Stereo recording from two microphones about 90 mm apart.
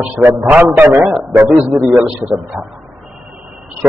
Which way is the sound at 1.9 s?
10° right (ahead or behind).